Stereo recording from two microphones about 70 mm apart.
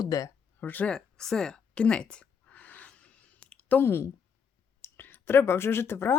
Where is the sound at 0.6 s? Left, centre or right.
Left.